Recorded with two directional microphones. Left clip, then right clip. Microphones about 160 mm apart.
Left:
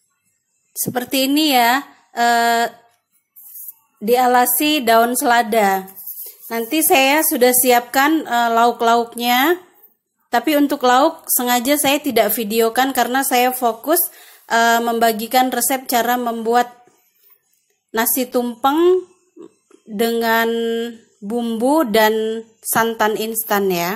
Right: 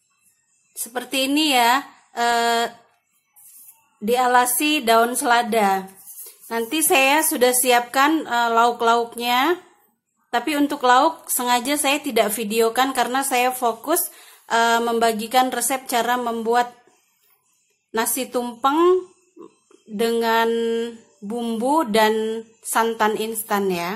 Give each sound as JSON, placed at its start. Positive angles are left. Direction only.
{"t": 0.9, "sound": "a woman's voice", "side_deg": 30}
{"t": 4.0, "sound": "a woman's voice", "side_deg": 25}
{"t": 17.9, "sound": "a woman's voice", "side_deg": 25}
{"t": 18.8, "sound": "a sound", "side_deg": 15}
{"t": 20.0, "sound": "a woman's voice", "side_deg": 25}
{"t": 20.5, "sound": "a woman's voice", "side_deg": 15}
{"t": 22.1, "sound": "a woman's voice", "side_deg": 15}
{"t": 22.9, "sound": "a woman's voice", "side_deg": 25}